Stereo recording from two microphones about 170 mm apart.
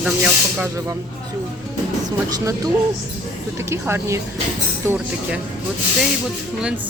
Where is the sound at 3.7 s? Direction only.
15° right (ahead or behind).